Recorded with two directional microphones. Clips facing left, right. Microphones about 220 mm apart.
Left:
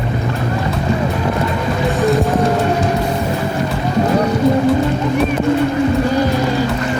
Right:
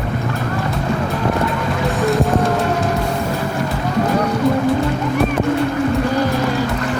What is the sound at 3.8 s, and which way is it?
Music, 20° left (ahead or behind).